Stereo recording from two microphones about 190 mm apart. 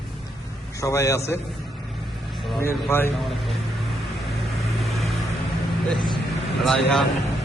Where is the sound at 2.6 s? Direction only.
15° left (ahead or behind).